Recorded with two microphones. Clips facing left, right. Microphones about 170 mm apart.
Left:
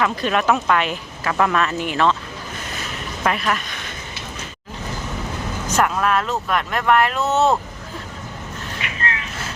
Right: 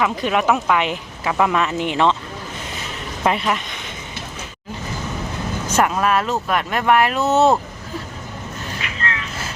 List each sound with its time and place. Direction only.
0.0 s speech: 15° right (ahead or behind)
3.2 s speech: 20° right (ahead or behind)
5.7 s speech: 5° right (ahead or behind)
7.3 s speech: 35° right (ahead or behind)